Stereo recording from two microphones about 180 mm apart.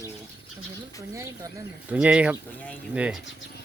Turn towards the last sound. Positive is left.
turn(degrees=-5)  # may be behind; listen again after turning